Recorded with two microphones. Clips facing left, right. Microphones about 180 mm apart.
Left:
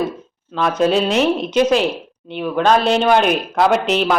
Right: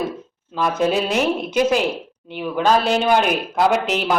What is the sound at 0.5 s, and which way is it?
Speech, 10° right (ahead or behind).